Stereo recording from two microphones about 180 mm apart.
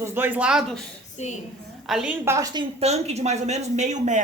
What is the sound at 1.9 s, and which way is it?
Speech, 5° right (ahead or behind).